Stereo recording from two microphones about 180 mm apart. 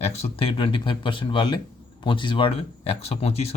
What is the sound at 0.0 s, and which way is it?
Speech, 35° left (ahead or behind).